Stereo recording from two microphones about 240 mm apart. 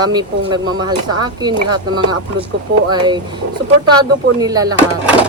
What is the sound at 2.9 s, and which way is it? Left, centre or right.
Speech, centre.